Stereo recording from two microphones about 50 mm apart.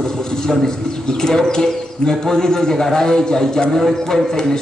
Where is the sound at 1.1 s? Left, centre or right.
Centre.